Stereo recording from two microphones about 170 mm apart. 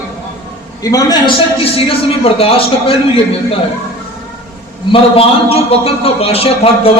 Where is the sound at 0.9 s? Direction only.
30° left (ahead or behind).